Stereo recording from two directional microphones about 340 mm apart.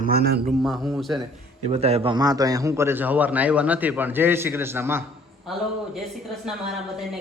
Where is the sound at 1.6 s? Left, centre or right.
Centre.